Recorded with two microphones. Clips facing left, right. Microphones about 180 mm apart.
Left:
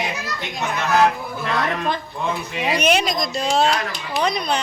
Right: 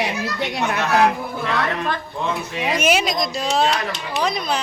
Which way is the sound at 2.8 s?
5° right (ahead or behind).